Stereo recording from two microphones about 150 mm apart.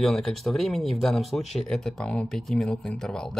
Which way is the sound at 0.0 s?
Centre (ahead or behind).